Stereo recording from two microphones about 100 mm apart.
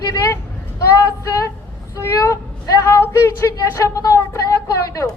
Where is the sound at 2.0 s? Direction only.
30° left (ahead or behind).